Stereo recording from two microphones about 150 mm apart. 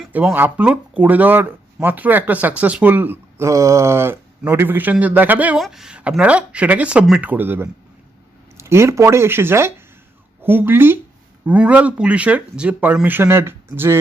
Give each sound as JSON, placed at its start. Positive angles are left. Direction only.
{"t": 0.1, "sound": "speech", "side_deg": -10}